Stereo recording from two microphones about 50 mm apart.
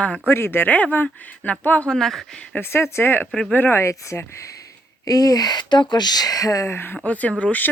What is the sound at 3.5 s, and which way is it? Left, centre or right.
Speech, left.